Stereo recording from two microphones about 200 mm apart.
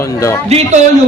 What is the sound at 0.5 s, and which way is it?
Speech, 30° right (ahead or behind).